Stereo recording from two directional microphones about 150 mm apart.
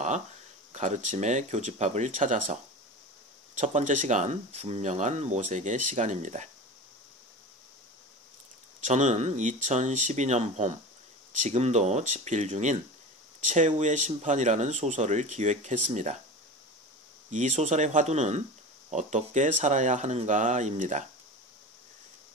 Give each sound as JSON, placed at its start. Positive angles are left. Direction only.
{"t": 0.7, "sound": "speech", "side_deg": -50}
{"t": 8.8, "sound": "speech", "side_deg": -50}
{"t": 17.3, "sound": "speech", "side_deg": -55}